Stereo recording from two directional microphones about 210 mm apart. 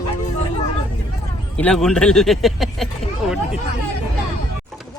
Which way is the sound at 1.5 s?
5° left (ahead or behind).